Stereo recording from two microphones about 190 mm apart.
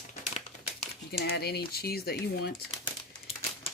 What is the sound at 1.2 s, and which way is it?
Speech, 55° left (ahead or behind).